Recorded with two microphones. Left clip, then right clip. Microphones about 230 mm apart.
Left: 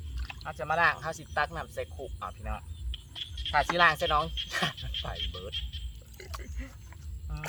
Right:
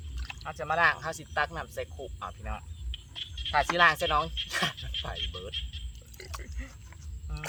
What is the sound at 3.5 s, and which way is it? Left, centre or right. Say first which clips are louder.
Speech: right 1 dB; centre.